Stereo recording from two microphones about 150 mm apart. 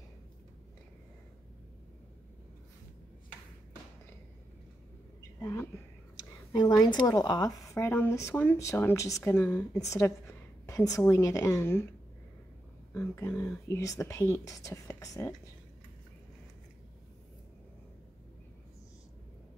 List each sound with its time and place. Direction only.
5.4 s a woman's voice: 20° left (ahead or behind)
12.9 s a woman's voice: 15° left (ahead or behind)